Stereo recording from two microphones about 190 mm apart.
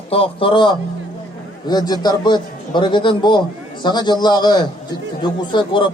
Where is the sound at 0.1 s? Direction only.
30° left (ahead or behind).